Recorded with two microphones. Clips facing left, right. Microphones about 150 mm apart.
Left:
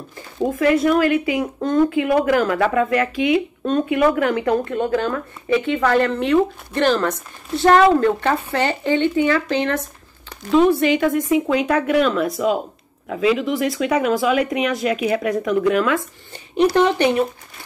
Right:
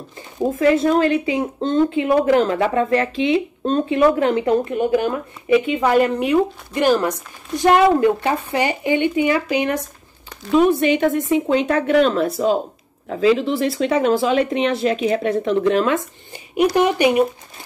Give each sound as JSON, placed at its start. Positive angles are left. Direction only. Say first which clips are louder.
{"t": 0.6, "sound": "speech", "louder": "right 1 dB", "side_deg": -30}
{"t": 16.5, "sound": "speech", "louder": "left 1 dB", "side_deg": -10}